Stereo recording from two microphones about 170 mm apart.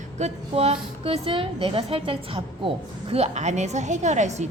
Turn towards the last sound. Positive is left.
turn(degrees=-40)  # may be behind; listen again after turning